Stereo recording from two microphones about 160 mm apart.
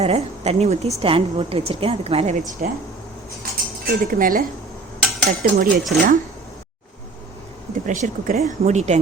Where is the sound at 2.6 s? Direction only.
60° right (ahead or behind).